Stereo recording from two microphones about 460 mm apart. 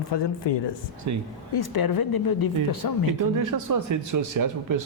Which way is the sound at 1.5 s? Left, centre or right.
Left.